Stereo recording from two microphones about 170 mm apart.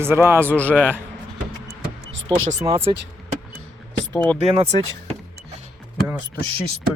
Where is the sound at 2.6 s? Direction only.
25° right (ahead or behind).